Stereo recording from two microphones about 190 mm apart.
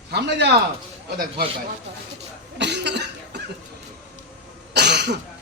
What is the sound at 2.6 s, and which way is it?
Cough, 65° right (ahead or behind).